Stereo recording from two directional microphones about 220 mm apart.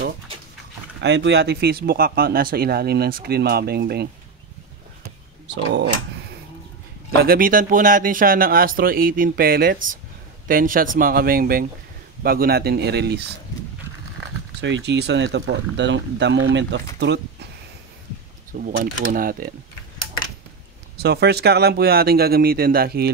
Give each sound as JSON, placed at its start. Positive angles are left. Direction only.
{"t": 1.0, "sound": "speech", "side_deg": -55}
{"t": 7.2, "sound": "speech", "side_deg": -40}
{"t": 14.6, "sound": "speech", "side_deg": -55}
{"t": 18.5, "sound": "speech", "side_deg": -35}
{"t": 21.0, "sound": "speech", "side_deg": -50}